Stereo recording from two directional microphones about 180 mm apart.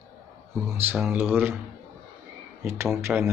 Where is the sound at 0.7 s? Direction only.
10° right (ahead or behind).